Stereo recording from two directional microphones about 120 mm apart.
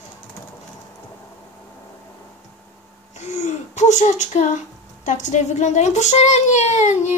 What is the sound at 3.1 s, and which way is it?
Speech, 75° left (ahead or behind).